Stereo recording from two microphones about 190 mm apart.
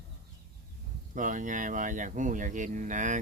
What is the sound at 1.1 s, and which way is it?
Speech, 45° right (ahead or behind).